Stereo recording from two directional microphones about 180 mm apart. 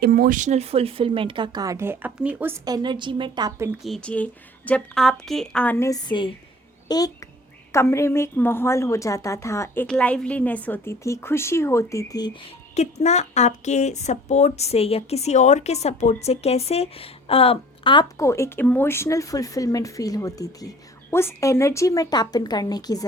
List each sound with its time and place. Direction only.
0.0 s speech: 55° right (ahead or behind); by 2.6 s 10° right (ahead or behind)
2.6 s speech: 25° right (ahead or behind)
3.8 s a woman's voice: 5° left (ahead or behind)
5.8 s a woman's voice: 20° left (ahead or behind)
12.7 s speech: 40° left (ahead or behind)
18.2 s speech: 15° left (ahead or behind)